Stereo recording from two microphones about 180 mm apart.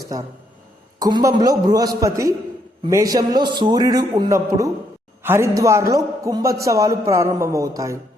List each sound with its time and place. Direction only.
0.1 s a man's voice: 20° right (ahead or behind)